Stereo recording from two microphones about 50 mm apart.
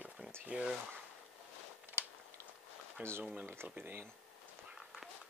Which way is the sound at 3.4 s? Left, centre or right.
Right.